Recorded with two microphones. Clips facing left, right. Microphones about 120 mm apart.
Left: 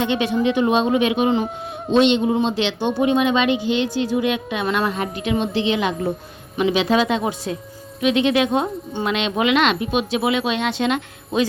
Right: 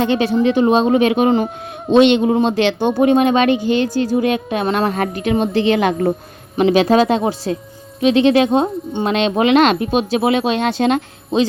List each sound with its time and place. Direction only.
0.0 s speech: 40° right (ahead or behind)
1.9 s speech: 60° right (ahead or behind); by 4.9 s 35° right (ahead or behind)
4.9 s speech: 50° right (ahead or behind); by 9.0 s 25° right (ahead or behind)
9.0 s speech: 35° right (ahead or behind)
11.3 s a man's voice: 25° right (ahead or behind)